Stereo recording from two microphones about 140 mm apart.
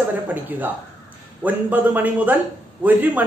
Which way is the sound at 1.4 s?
10° right (ahead or behind).